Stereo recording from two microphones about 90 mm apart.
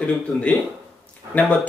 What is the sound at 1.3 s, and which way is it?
Speech, 15° left (ahead or behind).